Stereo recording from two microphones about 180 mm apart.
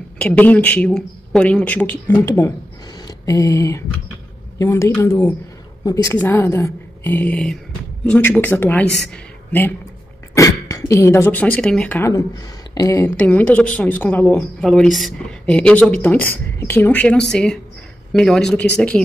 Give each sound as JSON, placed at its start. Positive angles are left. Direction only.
{"t": 0.2, "sound": "a woman's voice", "side_deg": 10}
{"t": 13.1, "sound": "a woman's voice", "side_deg": 5}